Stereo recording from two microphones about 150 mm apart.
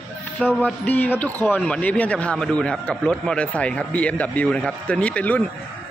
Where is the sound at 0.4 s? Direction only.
10° left (ahead or behind).